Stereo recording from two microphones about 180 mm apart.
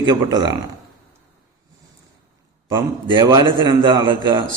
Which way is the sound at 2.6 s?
25° right (ahead or behind).